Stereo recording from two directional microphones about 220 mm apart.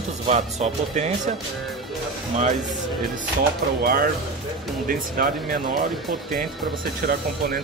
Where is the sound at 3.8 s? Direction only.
40° right (ahead or behind).